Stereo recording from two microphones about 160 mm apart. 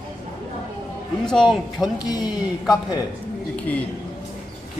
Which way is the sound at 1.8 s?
25° left (ahead or behind).